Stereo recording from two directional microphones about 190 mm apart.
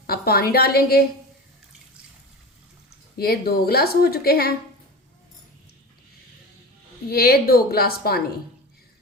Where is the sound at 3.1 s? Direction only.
55° left (ahead or behind).